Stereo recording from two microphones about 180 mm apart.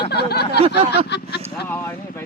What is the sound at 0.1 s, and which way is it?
Speech, 65° left (ahead or behind).